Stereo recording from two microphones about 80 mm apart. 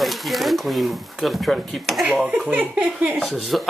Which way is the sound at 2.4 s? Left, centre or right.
Right.